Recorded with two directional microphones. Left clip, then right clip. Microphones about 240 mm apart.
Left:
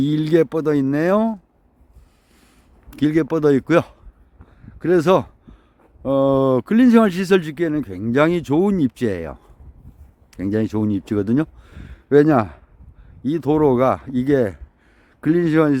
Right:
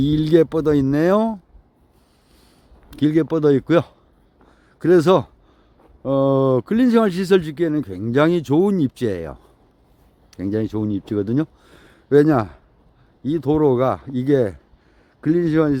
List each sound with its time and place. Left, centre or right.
0.0 s speech: centre
2.9 s speech: centre
4.4 s a sound: centre
6.0 s speech: centre